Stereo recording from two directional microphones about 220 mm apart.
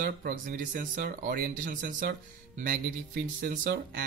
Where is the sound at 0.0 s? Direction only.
40° right (ahead or behind).